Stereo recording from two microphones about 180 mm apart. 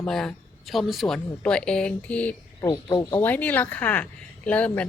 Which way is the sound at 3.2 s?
10° left (ahead or behind).